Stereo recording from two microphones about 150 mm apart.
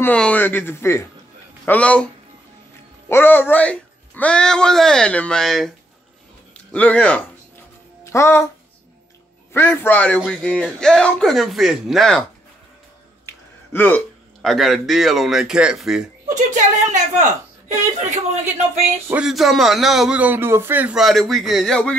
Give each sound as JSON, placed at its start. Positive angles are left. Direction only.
{"t": 0.0, "sound": "speech", "side_deg": 10}
{"t": 3.1, "sound": "a man's voice", "side_deg": 15}
{"t": 9.5, "sound": "speech", "side_deg": 15}
{"t": 13.7, "sound": "speech", "side_deg": 10}
{"t": 14.4, "sound": "speech", "side_deg": 0}
{"t": 16.3, "sound": "a woman's voice", "side_deg": -55}
{"t": 19.0, "sound": "speech", "side_deg": -5}